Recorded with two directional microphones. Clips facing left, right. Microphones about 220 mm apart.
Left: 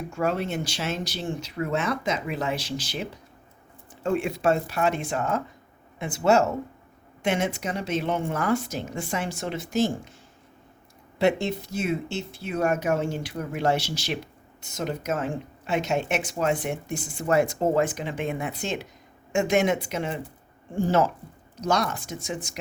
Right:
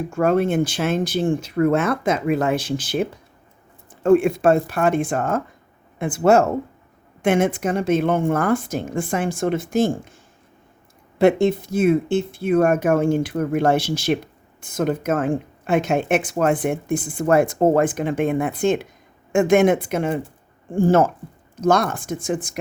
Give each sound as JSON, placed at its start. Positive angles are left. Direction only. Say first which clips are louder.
{"t": 0.1, "sound": "speech", "louder": "right 9 dB", "side_deg": -50}
{"t": 11.2, "sound": "speech", "louder": "right 8 dB", "side_deg": -55}